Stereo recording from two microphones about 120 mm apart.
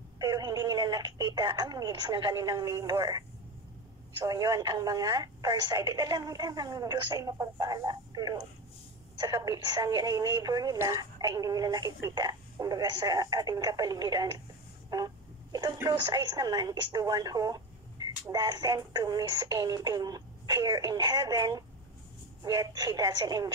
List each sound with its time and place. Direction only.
0.2 s a woman's voice: 35° right (ahead or behind)
14.9 s a sound: 30° right (ahead or behind)
16.0 s speech: 35° right (ahead or behind)